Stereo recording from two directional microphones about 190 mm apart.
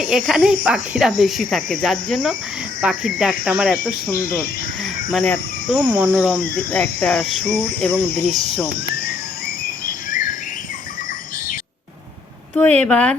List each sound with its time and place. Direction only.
0.0 s speech: 5° right (ahead or behind)
4.1 s speech: 50° left (ahead or behind)
5.1 s speech: 5° left (ahead or behind)
5.9 s speech: 10° right (ahead or behind)
6.6 s speech: 5° left (ahead or behind)
12.5 s speech: 5° left (ahead or behind)